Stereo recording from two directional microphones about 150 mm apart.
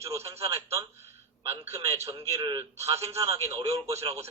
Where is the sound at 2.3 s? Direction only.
20° right (ahead or behind).